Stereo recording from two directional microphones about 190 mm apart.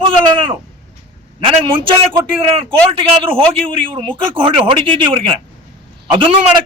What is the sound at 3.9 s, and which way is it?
A man's voice, 25° right (ahead or behind).